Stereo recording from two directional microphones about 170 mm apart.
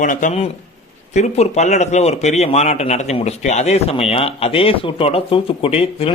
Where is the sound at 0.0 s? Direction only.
50° left (ahead or behind).